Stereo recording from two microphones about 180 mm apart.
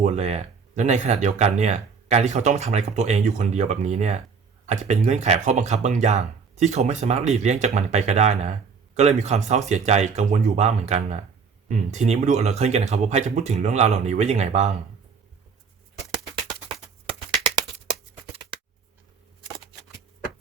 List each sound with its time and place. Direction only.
0.0 s speech: 35° right (ahead or behind)